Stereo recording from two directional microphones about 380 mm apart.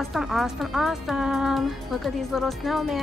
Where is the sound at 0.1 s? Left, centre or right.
Centre.